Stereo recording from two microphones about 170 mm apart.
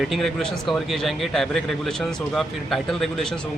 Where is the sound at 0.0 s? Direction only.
Centre (ahead or behind).